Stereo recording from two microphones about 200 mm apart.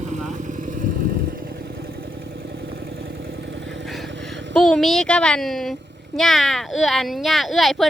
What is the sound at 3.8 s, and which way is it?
Vehicle, centre (ahead or behind).